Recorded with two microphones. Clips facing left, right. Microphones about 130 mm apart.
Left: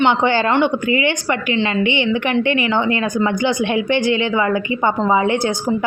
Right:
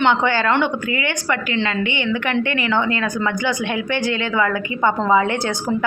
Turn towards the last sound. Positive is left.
turn(degrees=15)  # may be behind; listen again after turning